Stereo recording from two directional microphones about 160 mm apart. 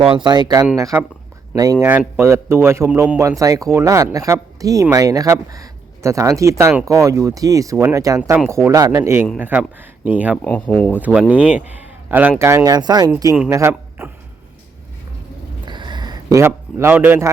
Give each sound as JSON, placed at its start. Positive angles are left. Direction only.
{"t": 0.0, "sound": "speech", "side_deg": -30}
{"t": 10.3, "sound": "speech", "side_deg": 10}
{"t": 11.0, "sound": "a man's voice", "side_deg": -5}
{"t": 15.6, "sound": "a sound", "side_deg": -30}